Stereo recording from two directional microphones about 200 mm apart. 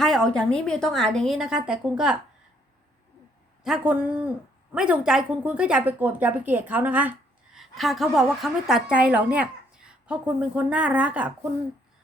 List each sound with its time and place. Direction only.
0.0 s a woman's voice: centre (ahead or behind)
3.6 s a woman's voice: 5° right (ahead or behind)